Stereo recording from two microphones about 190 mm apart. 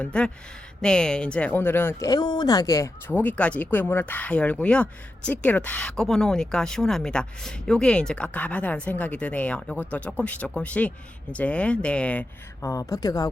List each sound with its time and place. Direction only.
0.0 s speech: 5° left (ahead or behind)
12.6 s a woman's voice: 15° left (ahead or behind)